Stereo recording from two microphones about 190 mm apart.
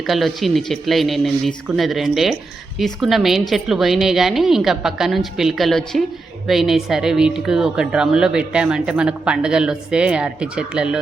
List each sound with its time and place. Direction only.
0.1 s speech: centre (ahead or behind)